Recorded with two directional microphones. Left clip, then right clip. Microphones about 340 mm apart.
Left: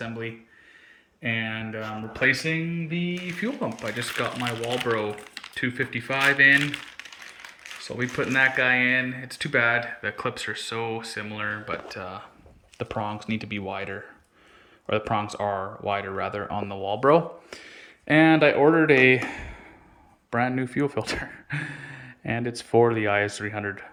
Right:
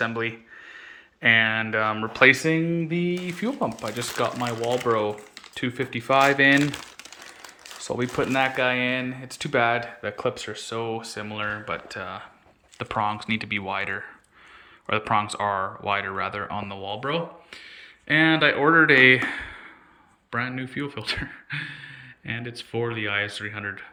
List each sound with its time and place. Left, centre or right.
0.0 s speech: centre
6.7 s crumpling: right
7.9 s speech: centre